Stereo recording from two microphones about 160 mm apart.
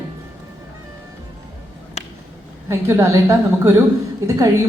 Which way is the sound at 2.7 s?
15° right (ahead or behind).